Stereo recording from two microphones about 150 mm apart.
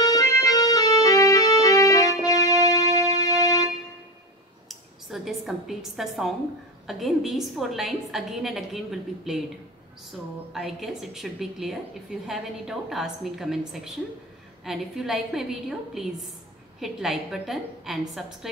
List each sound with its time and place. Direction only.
0.0 s music: 25° left (ahead or behind)
4.6 s a sound: centre (ahead or behind)
6.9 s a woman's voice: centre (ahead or behind)
10.5 s a woman's voice: centre (ahead or behind)
16.8 s a woman's voice: centre (ahead or behind)